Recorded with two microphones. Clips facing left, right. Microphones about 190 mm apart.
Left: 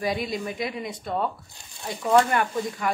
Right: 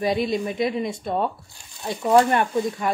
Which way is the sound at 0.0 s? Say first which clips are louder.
Right 5 dB; 25° right (ahead or behind).